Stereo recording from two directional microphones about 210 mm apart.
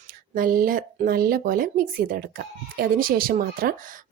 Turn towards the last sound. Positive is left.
turn(degrees=-45)  # may be behind; listen again after turning